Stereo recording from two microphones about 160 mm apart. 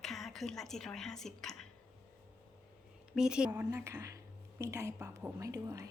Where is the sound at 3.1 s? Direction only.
5° right (ahead or behind).